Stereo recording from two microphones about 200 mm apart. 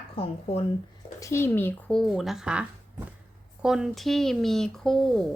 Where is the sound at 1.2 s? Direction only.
15° left (ahead or behind); by 2.6 s 5° right (ahead or behind).